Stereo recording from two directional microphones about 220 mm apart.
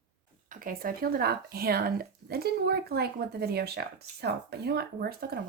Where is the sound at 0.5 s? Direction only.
40° right (ahead or behind).